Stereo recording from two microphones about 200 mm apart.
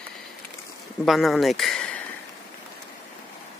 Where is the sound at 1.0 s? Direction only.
Centre (ahead or behind).